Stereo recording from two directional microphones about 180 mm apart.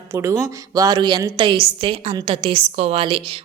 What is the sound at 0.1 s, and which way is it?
A woman's voice, 15° right (ahead or behind).